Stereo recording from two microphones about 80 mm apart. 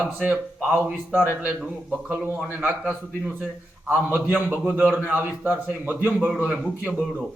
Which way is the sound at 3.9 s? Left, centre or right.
Right.